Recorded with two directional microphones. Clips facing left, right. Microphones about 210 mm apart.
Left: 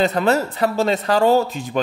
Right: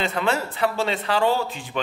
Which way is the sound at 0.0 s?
40° left (ahead or behind).